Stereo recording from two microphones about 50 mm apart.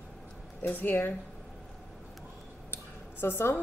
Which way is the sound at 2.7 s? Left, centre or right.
Left.